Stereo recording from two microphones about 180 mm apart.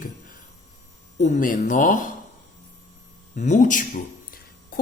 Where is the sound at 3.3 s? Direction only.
40° left (ahead or behind).